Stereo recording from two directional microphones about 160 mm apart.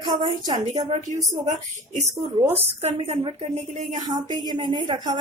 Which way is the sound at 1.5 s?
45° right (ahead or behind).